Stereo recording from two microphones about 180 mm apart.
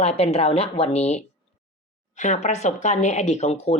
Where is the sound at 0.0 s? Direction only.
35° left (ahead or behind).